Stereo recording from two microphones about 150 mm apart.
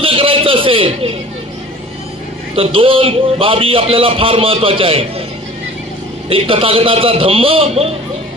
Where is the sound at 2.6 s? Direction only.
35° right (ahead or behind).